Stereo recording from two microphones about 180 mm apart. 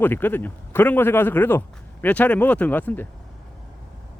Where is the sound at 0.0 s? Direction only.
10° left (ahead or behind).